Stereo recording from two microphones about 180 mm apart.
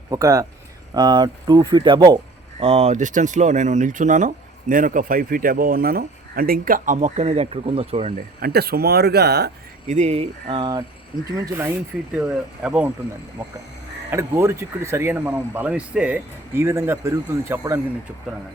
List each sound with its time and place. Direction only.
0.1 s speech: 15° right (ahead or behind)
2.6 s speech: 35° right (ahead or behind)
8.4 s speech: 60° right (ahead or behind)
9.8 s speech: 40° right (ahead or behind); by 12.9 s 10° right (ahead or behind)
14.1 s speech: 15° right (ahead or behind)